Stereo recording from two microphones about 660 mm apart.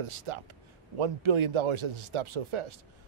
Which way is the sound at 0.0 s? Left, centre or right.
Right.